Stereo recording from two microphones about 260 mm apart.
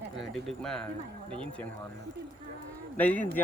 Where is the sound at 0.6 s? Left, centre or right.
Centre.